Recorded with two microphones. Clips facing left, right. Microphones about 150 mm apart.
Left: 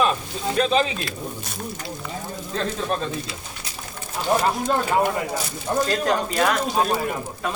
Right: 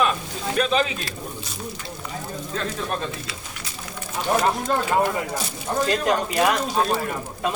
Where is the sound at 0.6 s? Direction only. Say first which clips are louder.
Left 1 dB; 30° left (ahead or behind).